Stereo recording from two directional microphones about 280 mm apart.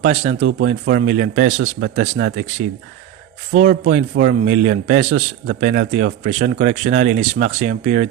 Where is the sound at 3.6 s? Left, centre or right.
Right.